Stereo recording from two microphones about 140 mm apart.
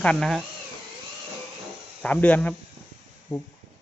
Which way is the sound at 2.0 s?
10° left (ahead or behind).